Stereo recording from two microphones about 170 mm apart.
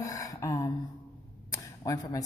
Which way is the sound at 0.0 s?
20° left (ahead or behind).